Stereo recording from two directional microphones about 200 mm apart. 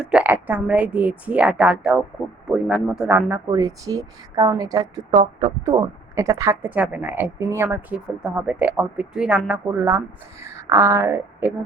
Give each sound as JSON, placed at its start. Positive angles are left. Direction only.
{"t": 0.0, "sound": "a woman's voice", "side_deg": -5}
{"t": 5.6, "sound": "a woman's voice", "side_deg": -15}